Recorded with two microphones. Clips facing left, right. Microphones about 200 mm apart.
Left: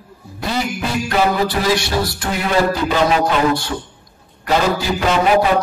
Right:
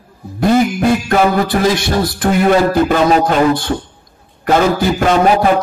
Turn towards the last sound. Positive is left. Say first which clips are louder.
# right 3 dB
turn(degrees=-50)  # may be behind; listen again after turning